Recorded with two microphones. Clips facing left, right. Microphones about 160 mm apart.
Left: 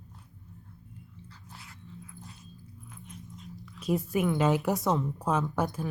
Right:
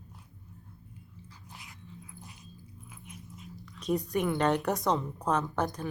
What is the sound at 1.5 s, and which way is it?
Dog, 15° right (ahead or behind).